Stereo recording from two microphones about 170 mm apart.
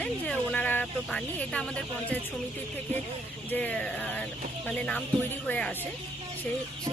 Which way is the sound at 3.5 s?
10° left (ahead or behind).